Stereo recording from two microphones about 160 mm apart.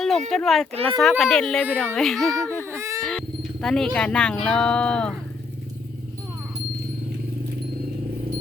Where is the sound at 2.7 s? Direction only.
20° right (ahead or behind).